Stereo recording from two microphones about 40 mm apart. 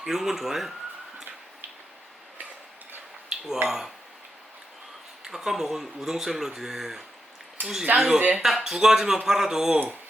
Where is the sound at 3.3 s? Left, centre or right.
Centre.